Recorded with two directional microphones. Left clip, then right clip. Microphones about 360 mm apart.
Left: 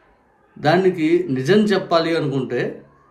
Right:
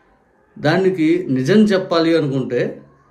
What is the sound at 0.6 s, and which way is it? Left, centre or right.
Speech, centre.